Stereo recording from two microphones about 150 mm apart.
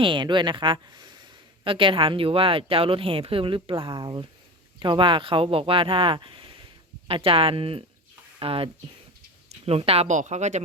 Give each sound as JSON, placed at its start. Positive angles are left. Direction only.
{"t": 0.0, "sound": "speech", "side_deg": -30}